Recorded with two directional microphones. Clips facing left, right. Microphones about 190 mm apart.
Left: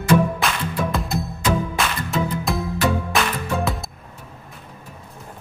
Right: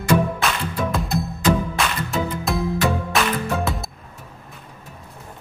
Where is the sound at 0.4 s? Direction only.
Centre (ahead or behind).